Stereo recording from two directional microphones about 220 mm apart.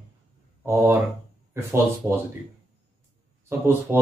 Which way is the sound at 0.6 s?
10° right (ahead or behind).